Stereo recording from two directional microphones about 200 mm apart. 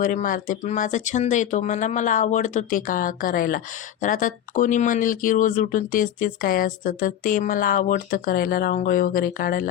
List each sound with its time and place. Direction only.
0.0 s speech: 40° left (ahead or behind)